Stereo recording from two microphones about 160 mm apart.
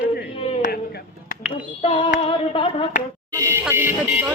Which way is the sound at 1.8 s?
30° left (ahead or behind).